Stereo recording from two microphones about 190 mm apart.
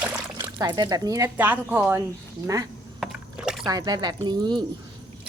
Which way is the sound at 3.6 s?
20° right (ahead or behind).